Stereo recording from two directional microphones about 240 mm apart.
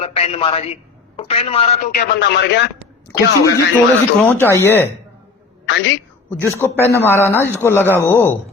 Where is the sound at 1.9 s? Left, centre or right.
Left.